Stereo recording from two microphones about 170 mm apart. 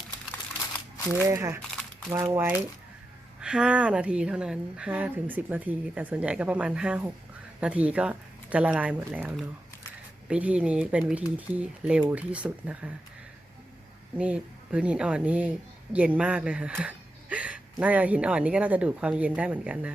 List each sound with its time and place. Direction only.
1.2 s speech: 15° right (ahead or behind)
14.2 s speech: 5° right (ahead or behind)